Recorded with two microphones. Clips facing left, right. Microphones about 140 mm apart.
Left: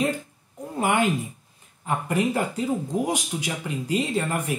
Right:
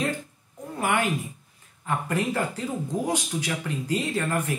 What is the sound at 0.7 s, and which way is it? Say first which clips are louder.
Speech: left 3 dB; 20° left (ahead or behind).